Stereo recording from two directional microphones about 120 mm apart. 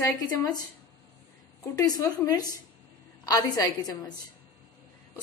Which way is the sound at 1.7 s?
30° left (ahead or behind).